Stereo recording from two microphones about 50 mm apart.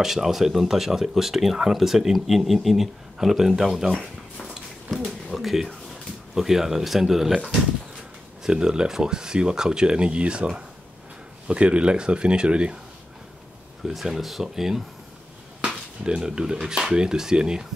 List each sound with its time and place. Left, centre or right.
0.0 s speech: centre
4.9 s a sound: centre
6.3 s speech: centre
8.5 s speech: centre
13.8 s speech: centre
16.0 s speech: centre